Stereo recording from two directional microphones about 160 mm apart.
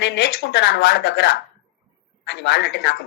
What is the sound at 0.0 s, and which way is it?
Speech, 90° left.